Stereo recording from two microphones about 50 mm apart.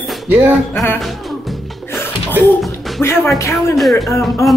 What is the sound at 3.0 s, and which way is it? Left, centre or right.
Speech, left.